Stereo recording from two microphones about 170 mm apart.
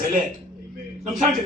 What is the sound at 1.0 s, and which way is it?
Speech, centre (ahead or behind).